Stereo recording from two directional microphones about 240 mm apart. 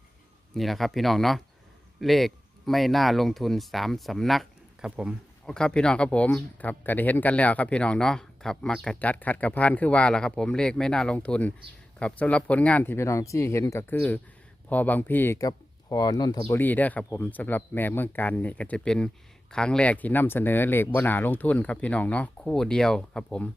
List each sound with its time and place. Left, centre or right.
0.5 s speech: centre